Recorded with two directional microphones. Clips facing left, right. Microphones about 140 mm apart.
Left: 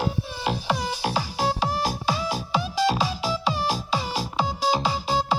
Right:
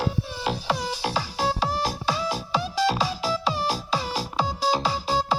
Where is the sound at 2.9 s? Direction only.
Centre (ahead or behind).